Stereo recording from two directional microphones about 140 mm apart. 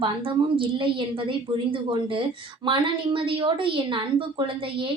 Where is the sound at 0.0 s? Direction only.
40° right (ahead or behind).